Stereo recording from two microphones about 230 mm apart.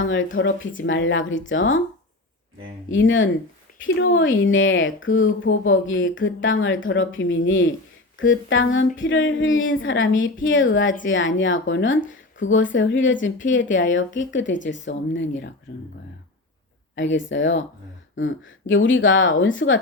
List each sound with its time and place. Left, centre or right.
0.0 s speech: left
2.9 s speech: left
16.9 s speech: left